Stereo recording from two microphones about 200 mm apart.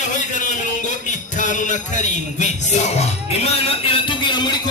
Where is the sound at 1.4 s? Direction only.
40° left (ahead or behind).